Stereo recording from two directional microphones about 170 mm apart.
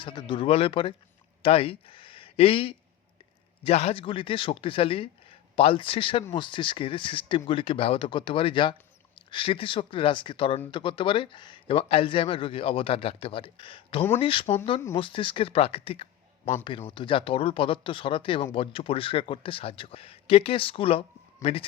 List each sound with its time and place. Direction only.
0.0 s speech: 30° left (ahead or behind)